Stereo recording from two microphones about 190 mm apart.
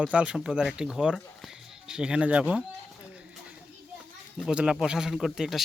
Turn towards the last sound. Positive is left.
turn(degrees=0)  # may be behind; listen again after turning